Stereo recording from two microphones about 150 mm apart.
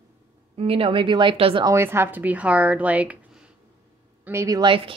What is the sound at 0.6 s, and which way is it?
A woman's voice, 40° right (ahead or behind).